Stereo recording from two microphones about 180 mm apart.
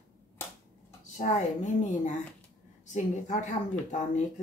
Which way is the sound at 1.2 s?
45° left (ahead or behind).